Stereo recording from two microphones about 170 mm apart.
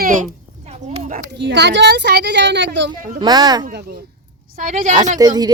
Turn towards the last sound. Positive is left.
turn(degrees=-25)  # may be behind; listen again after turning